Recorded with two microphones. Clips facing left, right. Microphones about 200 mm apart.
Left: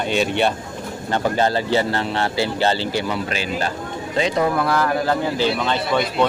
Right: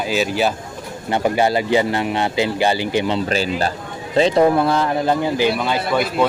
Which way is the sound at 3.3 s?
35° right (ahead or behind).